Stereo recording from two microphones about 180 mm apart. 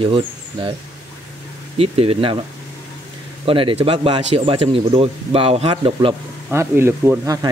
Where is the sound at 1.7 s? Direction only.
30° right (ahead or behind).